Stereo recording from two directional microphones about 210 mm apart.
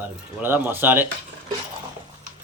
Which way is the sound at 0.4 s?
10° right (ahead or behind).